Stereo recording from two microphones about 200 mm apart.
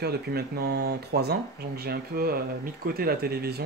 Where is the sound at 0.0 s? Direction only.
50° right (ahead or behind).